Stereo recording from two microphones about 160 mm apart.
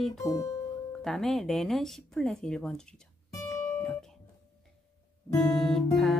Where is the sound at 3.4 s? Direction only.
5° left (ahead or behind).